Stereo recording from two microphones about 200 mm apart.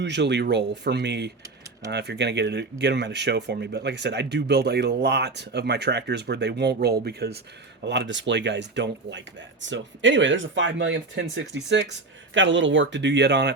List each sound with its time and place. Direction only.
0.0 s speech: 60° right (ahead or behind)